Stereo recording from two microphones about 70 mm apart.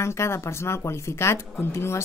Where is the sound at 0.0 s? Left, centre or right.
Left.